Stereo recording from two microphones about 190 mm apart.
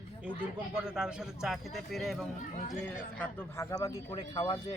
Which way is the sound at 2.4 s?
40° left (ahead or behind).